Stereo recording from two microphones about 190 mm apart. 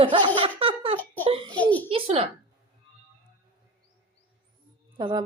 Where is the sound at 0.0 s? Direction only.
25° right (ahead or behind).